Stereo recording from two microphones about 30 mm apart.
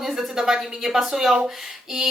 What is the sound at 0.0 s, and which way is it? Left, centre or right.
A woman's voice, centre.